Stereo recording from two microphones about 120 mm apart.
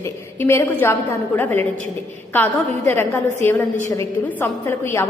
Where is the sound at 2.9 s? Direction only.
20° left (ahead or behind).